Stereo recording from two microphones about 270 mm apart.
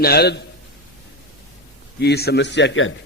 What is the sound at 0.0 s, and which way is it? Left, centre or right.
Speech, left.